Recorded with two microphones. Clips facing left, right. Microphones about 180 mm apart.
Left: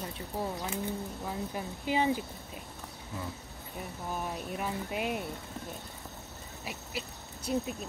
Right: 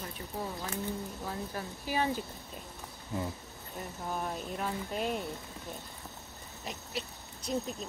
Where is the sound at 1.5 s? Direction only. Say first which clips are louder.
Left 3 dB; 15° left (ahead or behind).